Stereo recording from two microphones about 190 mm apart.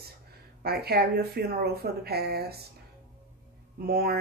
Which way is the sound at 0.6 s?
55° right (ahead or behind).